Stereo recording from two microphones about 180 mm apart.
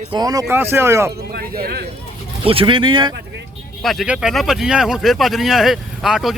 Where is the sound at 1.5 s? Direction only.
60° right (ahead or behind).